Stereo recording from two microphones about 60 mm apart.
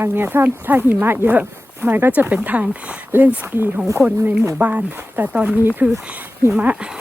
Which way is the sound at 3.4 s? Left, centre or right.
Right.